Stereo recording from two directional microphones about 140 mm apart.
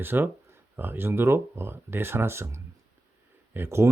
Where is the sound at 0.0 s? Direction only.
15° right (ahead or behind).